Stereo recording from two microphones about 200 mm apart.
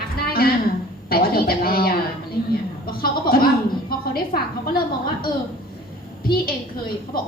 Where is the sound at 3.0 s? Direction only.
50° left (ahead or behind).